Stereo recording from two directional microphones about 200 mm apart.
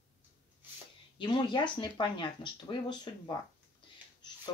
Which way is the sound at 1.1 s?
25° left (ahead or behind).